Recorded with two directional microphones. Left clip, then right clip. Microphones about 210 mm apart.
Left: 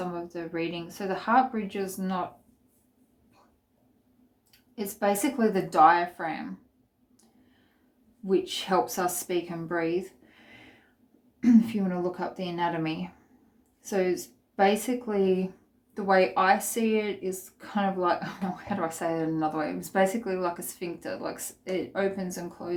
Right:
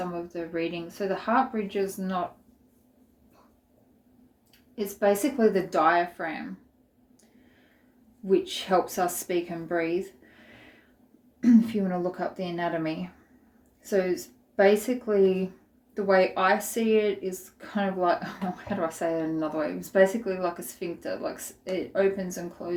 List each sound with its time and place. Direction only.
0.1 s speech: 25° left (ahead or behind)
4.9 s speech: 30° left (ahead or behind)
8.3 s speech: 25° left (ahead or behind)
11.3 s speech: 25° left (ahead or behind)